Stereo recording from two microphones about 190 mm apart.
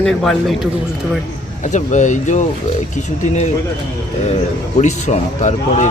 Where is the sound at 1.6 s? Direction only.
40° left (ahead or behind).